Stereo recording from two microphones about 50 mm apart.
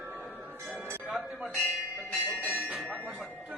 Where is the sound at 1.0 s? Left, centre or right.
Centre.